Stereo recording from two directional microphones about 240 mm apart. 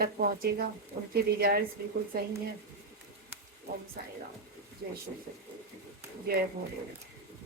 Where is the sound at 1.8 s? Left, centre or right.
Right.